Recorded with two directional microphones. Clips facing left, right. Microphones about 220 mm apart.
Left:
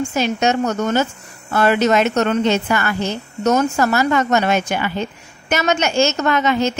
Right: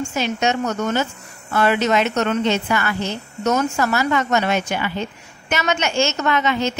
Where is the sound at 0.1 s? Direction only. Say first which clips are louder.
Left 2 dB; 40° left (ahead or behind).